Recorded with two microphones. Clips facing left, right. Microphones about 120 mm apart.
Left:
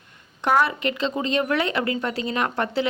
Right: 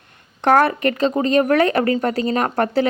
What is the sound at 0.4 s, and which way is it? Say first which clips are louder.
Speech: right 6 dB; 50° right (ahead or behind).